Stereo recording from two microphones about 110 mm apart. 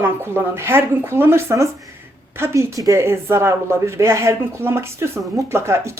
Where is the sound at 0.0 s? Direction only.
25° right (ahead or behind).